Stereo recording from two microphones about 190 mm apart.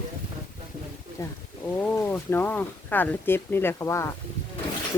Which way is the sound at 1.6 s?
10° left (ahead or behind).